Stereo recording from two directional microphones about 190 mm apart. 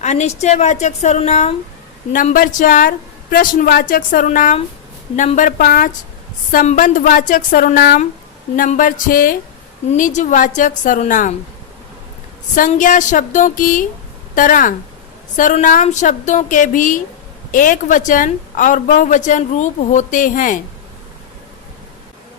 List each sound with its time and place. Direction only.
0.0 s a woman's voice: 35° left (ahead or behind)
12.5 s a woman's voice: 45° left (ahead or behind)